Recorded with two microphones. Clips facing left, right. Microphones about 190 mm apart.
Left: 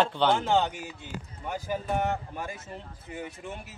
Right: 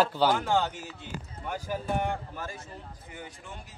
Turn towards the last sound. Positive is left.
turn(degrees=20)  # may be behind; listen again after turning